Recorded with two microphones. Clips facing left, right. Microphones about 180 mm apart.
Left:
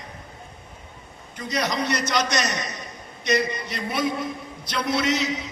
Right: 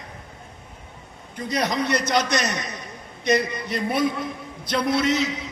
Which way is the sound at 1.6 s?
55° right (ahead or behind).